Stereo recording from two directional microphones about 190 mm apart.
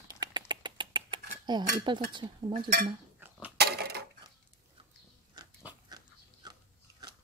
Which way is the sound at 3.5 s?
55° right (ahead or behind).